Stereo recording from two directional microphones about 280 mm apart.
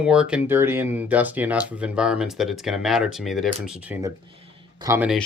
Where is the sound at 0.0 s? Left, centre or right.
Centre.